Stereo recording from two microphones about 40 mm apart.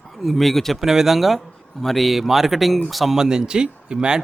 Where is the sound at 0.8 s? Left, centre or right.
Centre.